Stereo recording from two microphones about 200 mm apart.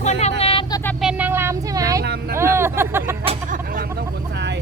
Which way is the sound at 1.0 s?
10° right (ahead or behind).